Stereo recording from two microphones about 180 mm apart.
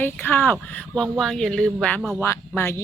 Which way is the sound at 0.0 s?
10° left (ahead or behind).